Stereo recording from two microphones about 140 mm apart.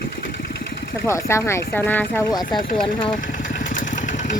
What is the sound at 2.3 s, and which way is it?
Speech, 30° left (ahead or behind).